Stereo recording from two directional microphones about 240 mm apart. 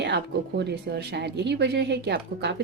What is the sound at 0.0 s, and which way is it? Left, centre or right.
Speech, right.